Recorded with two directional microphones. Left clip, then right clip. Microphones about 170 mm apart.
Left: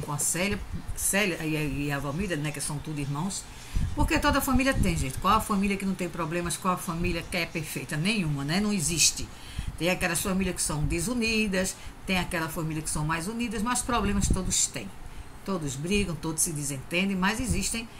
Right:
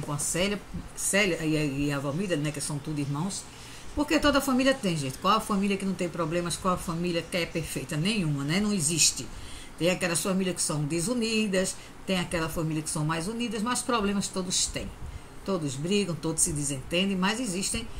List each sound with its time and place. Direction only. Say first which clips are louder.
0.1 s speech: right 1 dB; 10° left (ahead or behind)